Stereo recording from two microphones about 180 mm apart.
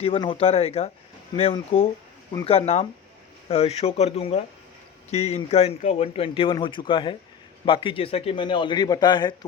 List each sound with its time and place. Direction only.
0.0 s a man's voice: 30° left (ahead or behind)